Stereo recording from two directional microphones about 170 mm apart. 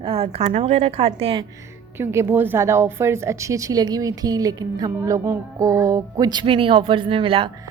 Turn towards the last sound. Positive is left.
turn(degrees=-30)  # may be behind; listen again after turning